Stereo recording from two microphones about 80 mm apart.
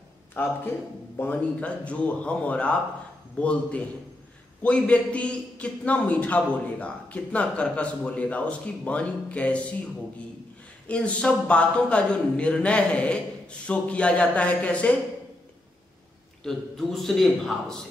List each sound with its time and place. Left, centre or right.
0.4 s a man's voice: left
10.9 s a man's voice: centre
16.4 s a man's voice: centre